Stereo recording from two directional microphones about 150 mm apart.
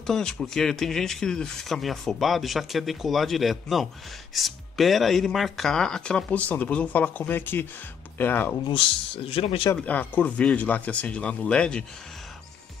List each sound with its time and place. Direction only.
0.0 s speech: 5° left (ahead or behind)
8.6 s speech: 35° left (ahead or behind)
9.8 s speech: 10° left (ahead or behind)